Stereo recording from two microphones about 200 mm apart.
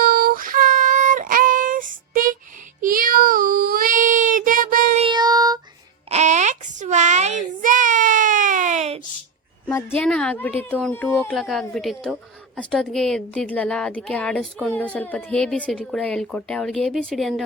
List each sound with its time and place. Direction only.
0.0 s child singing: 45° right (ahead or behind)
5.0 s child singing: 20° right (ahead or behind)
6.1 s child singing: 35° right (ahead or behind)
9.6 s a woman's voice: 10° left (ahead or behind)